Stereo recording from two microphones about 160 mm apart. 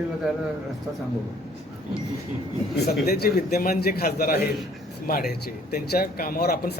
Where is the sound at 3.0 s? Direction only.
75° left (ahead or behind).